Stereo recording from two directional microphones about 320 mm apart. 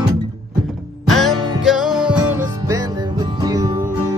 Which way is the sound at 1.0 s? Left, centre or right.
Centre.